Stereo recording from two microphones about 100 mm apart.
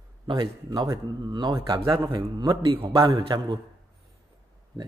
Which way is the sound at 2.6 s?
65° right (ahead or behind).